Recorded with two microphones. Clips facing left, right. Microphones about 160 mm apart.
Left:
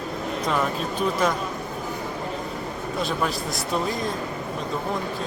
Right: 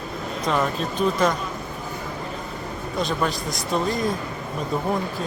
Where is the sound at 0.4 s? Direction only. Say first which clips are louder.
Right 2 dB; centre (ahead or behind).